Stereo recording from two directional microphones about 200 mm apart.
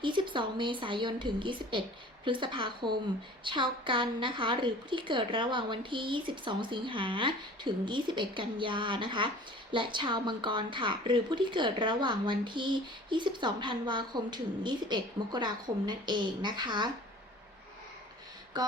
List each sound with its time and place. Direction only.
0.0 s a woman's voice: 25° right (ahead or behind)